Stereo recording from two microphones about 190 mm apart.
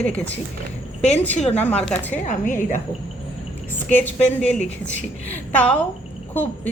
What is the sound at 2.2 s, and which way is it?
Speech, 40° left (ahead or behind).